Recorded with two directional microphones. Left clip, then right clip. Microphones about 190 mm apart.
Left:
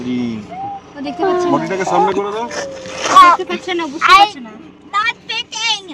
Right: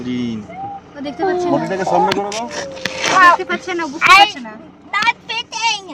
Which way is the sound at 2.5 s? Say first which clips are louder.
Even; 5° right (ahead or behind).